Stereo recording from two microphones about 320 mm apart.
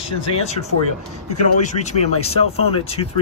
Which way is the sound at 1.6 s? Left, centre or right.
Centre.